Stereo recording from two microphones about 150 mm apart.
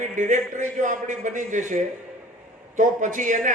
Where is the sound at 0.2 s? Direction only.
55° right (ahead or behind).